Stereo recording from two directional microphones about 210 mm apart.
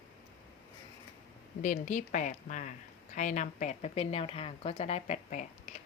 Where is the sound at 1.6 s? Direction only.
35° left (ahead or behind).